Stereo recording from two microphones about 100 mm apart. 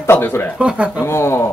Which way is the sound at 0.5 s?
10° right (ahead or behind).